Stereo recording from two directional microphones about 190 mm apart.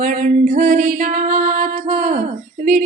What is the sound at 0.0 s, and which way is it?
Music, 45° right (ahead or behind).